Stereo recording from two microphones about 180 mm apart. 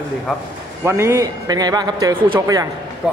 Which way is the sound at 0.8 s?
15° right (ahead or behind).